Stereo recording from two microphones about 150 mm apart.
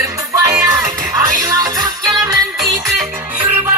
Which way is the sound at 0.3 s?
20° right (ahead or behind).